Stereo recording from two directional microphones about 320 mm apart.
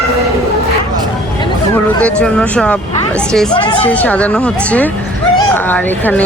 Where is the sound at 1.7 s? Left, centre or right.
Centre.